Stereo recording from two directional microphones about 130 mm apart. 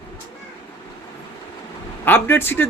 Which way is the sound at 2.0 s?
15° left (ahead or behind).